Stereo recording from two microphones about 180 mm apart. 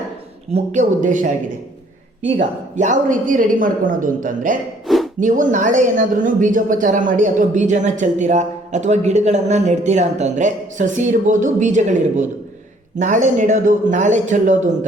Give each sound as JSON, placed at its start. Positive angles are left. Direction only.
{"t": 0.5, "sound": "speech", "side_deg": -40}
{"t": 2.7, "sound": "speech", "side_deg": -45}
{"t": 4.9, "sound": "a sound", "side_deg": 0}
{"t": 5.2, "sound": "speech", "side_deg": -45}